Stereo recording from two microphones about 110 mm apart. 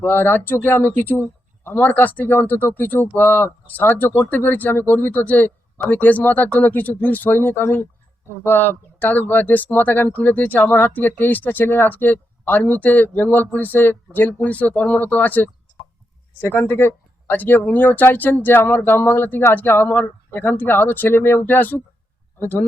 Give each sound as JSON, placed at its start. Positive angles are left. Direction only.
{"t": 0.0, "sound": "speech", "side_deg": 20}